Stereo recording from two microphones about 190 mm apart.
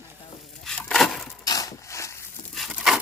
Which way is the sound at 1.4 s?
20° left (ahead or behind).